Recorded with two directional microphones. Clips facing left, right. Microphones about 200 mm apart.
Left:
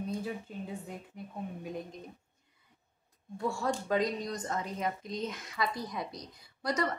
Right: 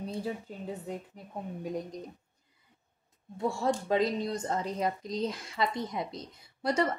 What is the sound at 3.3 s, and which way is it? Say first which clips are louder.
A woman's voice: right 3 dB; 25° right (ahead or behind).